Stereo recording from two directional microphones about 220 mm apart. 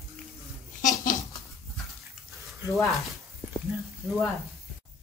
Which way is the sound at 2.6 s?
15° right (ahead or behind).